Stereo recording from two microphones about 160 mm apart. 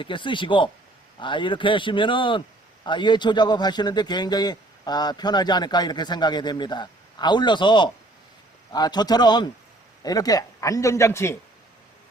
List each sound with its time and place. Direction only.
0.0 s a man's voice: 30° left (ahead or behind)